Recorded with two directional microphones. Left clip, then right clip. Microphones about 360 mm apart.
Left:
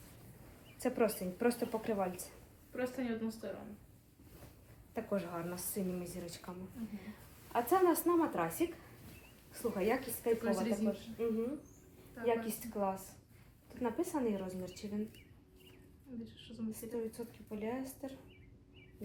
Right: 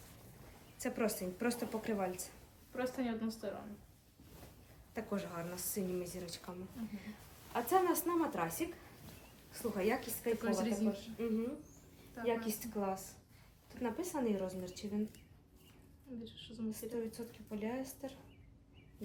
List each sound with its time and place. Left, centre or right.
0.8 s a woman's voice: centre
4.9 s a woman's voice: centre
7.5 s a woman's voice: centre
16.2 s a woman's voice: centre